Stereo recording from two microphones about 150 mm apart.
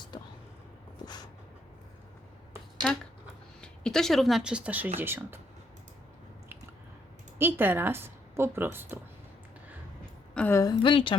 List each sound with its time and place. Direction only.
0.1 s a sound: 30° left (ahead or behind)
1.0 s vehicle: 30° left (ahead or behind)
2.8 s speech: centre (ahead or behind); by 5.4 s 15° right (ahead or behind)
7.3 s a woman's voice: 15° right (ahead or behind)
10.3 s a sound: 10° left (ahead or behind)
10.6 s a woman's voice: 30° left (ahead or behind)